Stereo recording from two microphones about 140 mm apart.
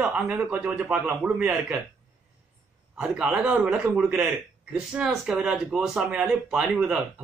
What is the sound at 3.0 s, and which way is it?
Speech, 5° right (ahead or behind).